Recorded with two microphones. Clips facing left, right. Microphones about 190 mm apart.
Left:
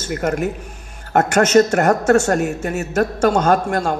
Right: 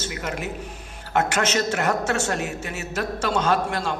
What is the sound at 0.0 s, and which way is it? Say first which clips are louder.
A woman's voice: left 9 dB; 50° left (ahead or behind).